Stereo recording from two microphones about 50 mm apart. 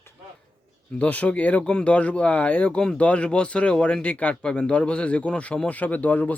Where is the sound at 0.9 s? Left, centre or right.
Left.